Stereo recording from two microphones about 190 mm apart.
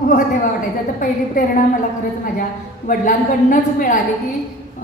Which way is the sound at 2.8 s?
45° left (ahead or behind).